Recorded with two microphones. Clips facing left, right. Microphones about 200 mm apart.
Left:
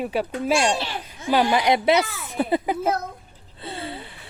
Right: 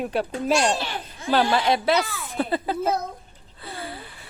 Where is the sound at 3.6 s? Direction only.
25° left (ahead or behind).